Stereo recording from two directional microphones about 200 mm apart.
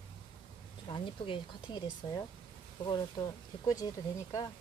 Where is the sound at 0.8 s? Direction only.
25° left (ahead or behind).